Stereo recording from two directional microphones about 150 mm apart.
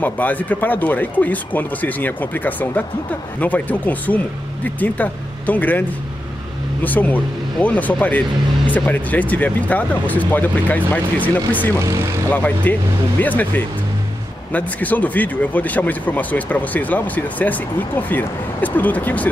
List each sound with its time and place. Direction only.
0.0 s speech: 10° left (ahead or behind)
11.8 s speech: 20° right (ahead or behind)
12.3 s speech: 10° left (ahead or behind)